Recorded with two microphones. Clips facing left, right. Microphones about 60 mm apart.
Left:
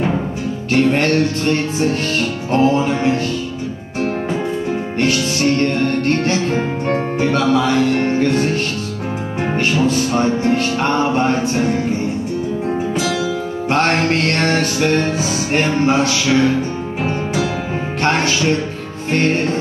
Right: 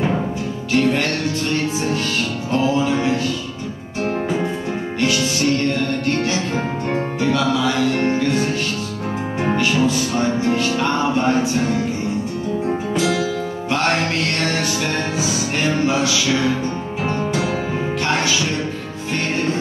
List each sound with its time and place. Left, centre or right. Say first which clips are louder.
0.9 s music: left 5 dB; left
5.0 s music: left 2 dB; left
9.6 s music: left 3 dB; left
13.7 s music: left 4 dB; left
18.0 s music: left 5 dB; left